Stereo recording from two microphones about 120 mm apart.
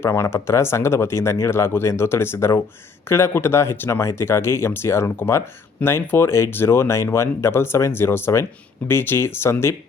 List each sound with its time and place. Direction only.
0.0 s speech: 20° left (ahead or behind)